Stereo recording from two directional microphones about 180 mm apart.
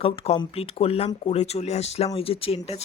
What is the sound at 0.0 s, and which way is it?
Speech, 35° left (ahead or behind).